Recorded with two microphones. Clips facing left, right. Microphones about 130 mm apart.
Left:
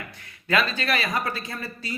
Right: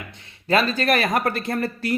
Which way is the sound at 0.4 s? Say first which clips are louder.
Right 5 dB; 40° right (ahead or behind).